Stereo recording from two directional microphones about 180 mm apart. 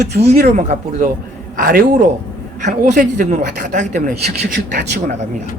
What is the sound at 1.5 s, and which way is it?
Speech, 55° right (ahead or behind).